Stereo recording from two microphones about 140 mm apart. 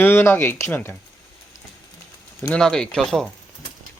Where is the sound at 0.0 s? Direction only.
15° left (ahead or behind).